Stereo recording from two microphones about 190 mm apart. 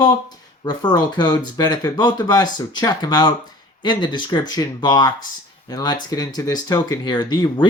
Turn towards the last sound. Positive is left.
turn(degrees=25)  # may be behind; listen again after turning